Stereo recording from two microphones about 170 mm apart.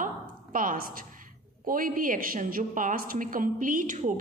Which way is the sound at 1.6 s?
55° right (ahead or behind).